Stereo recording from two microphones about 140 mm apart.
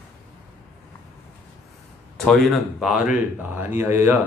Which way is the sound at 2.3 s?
Centre (ahead or behind).